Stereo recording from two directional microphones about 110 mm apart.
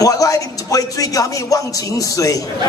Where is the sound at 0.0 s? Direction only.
30° left (ahead or behind).